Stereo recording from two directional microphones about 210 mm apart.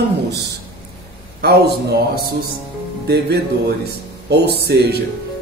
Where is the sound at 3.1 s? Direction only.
50° right (ahead or behind).